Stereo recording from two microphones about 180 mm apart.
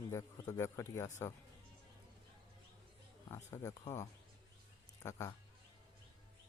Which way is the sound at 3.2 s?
15° left (ahead or behind).